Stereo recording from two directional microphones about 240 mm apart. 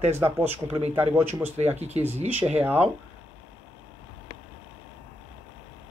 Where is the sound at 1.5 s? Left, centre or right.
Right.